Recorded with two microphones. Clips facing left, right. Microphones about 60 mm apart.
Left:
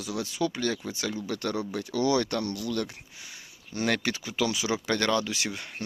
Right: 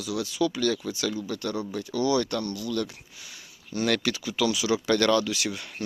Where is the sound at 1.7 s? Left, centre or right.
Left.